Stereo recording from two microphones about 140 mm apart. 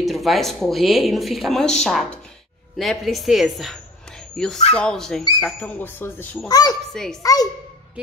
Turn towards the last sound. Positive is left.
turn(degrees=25)  # may be behind; listen again after turning